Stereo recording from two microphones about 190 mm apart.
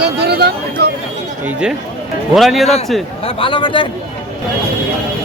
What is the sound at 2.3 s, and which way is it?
Speech, centre (ahead or behind).